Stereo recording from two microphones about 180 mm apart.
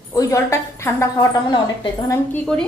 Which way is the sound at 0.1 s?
15° left (ahead or behind).